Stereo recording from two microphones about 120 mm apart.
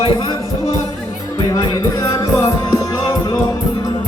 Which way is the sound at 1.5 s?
30° left (ahead or behind).